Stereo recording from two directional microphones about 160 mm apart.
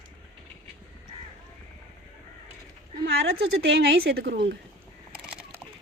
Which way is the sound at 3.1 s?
80° right.